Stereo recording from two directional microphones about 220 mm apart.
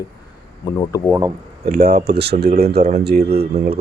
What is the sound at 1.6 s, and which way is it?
Speech, 45° right (ahead or behind).